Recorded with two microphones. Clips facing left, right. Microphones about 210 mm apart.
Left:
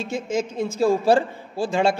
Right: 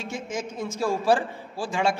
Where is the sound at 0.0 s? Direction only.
25° left (ahead or behind).